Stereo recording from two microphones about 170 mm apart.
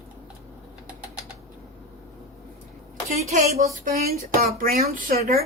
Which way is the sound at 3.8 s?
55° right (ahead or behind).